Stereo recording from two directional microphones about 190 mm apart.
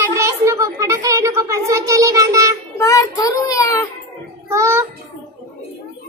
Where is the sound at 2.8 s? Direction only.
15° left (ahead or behind).